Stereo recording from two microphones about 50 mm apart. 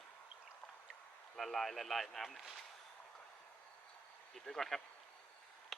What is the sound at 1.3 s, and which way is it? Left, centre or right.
Speech, centre.